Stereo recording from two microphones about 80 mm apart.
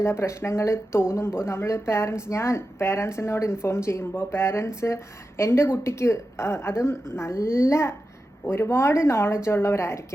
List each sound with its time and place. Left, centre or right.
0.0 s speech: left